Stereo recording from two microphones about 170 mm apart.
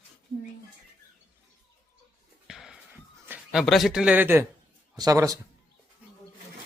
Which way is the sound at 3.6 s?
Centre (ahead or behind).